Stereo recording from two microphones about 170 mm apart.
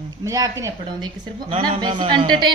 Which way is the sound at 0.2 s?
20° right (ahead or behind).